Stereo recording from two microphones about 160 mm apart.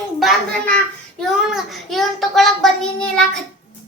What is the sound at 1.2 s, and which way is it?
Child singing, centre (ahead or behind).